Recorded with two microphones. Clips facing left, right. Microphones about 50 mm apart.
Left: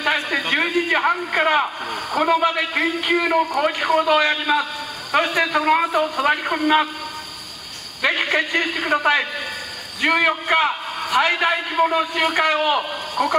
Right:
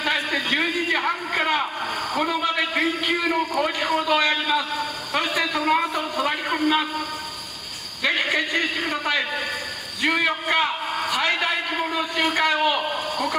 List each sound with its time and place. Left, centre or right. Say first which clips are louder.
0.0 s a sound: left 3 dB; centre
2.5 s a man's voice: left 1 dB; centre
5.1 s a sound: left 6 dB; centre
8.5 s a man's voice: left 2 dB; centre
8.9 s a man's voice: left 5 dB; left
12.7 s a man's voice: left 3 dB; centre